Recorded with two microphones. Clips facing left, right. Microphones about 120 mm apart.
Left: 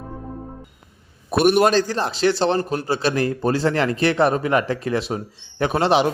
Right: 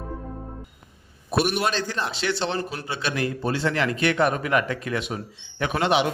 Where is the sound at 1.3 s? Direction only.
50° left (ahead or behind).